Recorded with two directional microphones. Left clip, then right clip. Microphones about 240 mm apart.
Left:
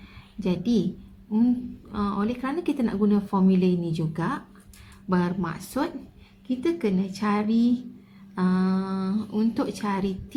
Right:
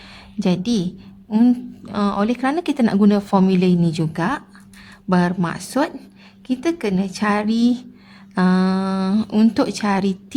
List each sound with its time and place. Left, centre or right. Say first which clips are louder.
0.3 s a woman's voice: right 5 dB; right